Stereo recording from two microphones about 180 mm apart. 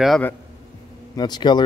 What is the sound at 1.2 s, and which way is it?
Speech, 25° left (ahead or behind).